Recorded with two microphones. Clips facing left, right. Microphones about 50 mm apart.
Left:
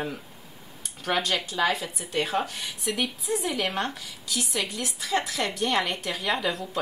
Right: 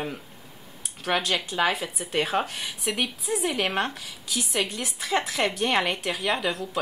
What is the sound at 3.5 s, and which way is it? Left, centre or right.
A woman's voice, right.